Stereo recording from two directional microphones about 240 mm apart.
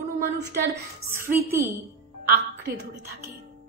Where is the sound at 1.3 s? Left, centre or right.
Centre.